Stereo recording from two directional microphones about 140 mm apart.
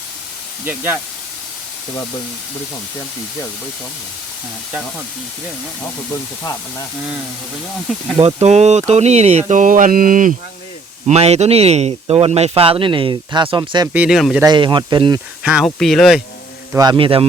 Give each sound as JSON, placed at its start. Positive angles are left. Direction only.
{"t": 0.6, "sound": "speech", "side_deg": -15}
{"t": 6.4, "sound": "speech", "side_deg": 25}
{"t": 8.4, "sound": "speech", "side_deg": -50}
{"t": 11.1, "sound": "speech", "side_deg": -50}
{"t": 13.8, "sound": "speech", "side_deg": -10}
{"t": 14.4, "sound": "speech", "side_deg": -35}
{"t": 15.4, "sound": "speech", "side_deg": 0}
{"t": 16.7, "sound": "a man's voice", "side_deg": -25}
{"t": 17.0, "sound": "speech", "side_deg": -40}